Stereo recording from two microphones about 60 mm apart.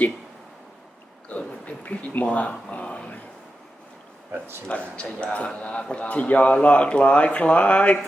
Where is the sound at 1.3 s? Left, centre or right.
Left.